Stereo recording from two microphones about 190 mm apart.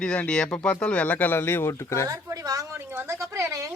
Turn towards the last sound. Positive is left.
turn(degrees=-15)  # may be behind; listen again after turning